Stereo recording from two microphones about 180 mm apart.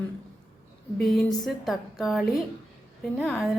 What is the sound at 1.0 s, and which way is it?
A woman's voice, 5° left (ahead or behind).